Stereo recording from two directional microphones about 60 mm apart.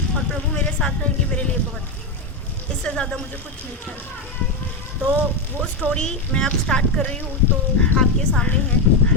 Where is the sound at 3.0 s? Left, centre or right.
Centre.